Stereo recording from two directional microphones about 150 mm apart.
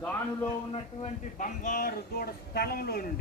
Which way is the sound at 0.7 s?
45° left (ahead or behind).